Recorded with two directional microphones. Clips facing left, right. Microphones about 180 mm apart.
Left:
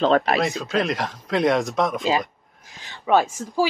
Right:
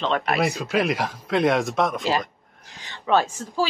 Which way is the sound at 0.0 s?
35° left (ahead or behind).